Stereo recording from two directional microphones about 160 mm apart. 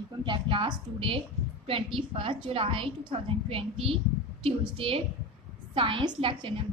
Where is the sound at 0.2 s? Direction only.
30° right (ahead or behind).